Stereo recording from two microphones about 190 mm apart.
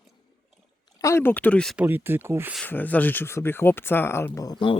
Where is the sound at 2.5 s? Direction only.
10° left (ahead or behind); by 4.8 s 25° left (ahead or behind).